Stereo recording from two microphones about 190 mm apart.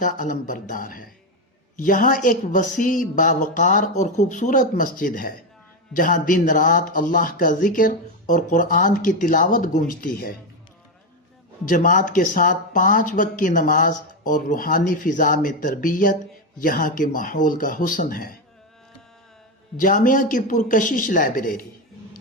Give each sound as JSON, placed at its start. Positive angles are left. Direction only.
{"t": 0.0, "sound": "speech", "side_deg": 45}
{"t": 11.7, "sound": "speech", "side_deg": 45}
{"t": 19.7, "sound": "speech", "side_deg": 45}